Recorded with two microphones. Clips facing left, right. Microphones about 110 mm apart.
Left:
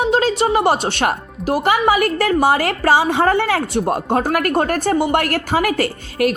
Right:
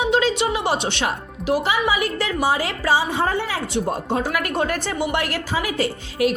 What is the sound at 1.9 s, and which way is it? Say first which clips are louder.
A woman's voice: left 7 dB; 60° left (ahead or behind).